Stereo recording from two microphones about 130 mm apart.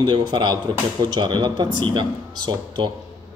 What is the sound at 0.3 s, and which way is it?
Speech, 35° right (ahead or behind).